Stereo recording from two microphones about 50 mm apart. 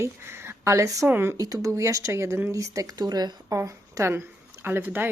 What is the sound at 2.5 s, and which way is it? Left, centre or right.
A woman's voice, right.